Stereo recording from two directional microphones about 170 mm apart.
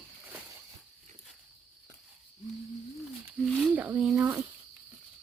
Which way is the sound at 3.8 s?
10° right (ahead or behind).